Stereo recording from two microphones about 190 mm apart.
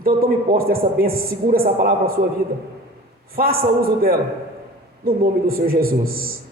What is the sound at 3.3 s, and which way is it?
Speech, 50° right (ahead or behind).